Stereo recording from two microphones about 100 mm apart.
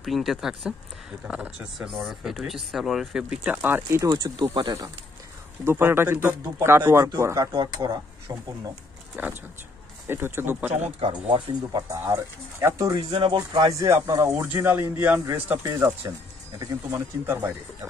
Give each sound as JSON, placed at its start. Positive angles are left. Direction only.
{"t": 0.0, "sound": "speech", "side_deg": 0}
{"t": 4.1, "sound": "speech", "side_deg": -45}
{"t": 5.7, "sound": "speech", "side_deg": -25}
{"t": 7.3, "sound": "speech", "side_deg": -45}
{"t": 9.1, "sound": "speech", "side_deg": -15}
{"t": 11.0, "sound": "speech", "side_deg": -60}
{"t": 11.9, "sound": "speech", "side_deg": -30}
{"t": 12.9, "sound": "speech", "side_deg": -50}
{"t": 13.7, "sound": "speech", "side_deg": -30}
{"t": 15.6, "sound": "speech", "side_deg": -30}